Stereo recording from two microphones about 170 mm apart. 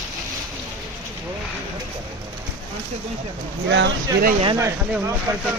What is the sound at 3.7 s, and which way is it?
Speech, 90° right.